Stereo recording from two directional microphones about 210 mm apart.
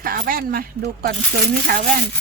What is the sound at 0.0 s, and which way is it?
Speech, 45° right (ahead or behind).